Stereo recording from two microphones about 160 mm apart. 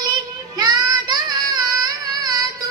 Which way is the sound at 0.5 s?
25° right (ahead or behind).